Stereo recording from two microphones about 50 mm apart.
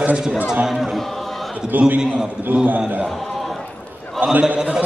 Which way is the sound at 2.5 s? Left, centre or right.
Right.